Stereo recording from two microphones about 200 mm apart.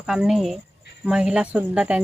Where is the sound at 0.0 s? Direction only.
5° right (ahead or behind).